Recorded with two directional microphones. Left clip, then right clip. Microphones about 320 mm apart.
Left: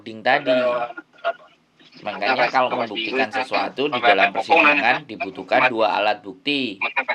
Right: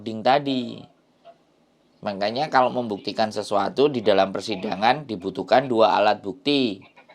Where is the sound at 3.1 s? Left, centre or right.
Right.